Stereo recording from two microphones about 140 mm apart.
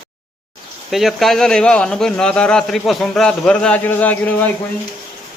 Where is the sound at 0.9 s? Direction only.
Centre (ahead or behind).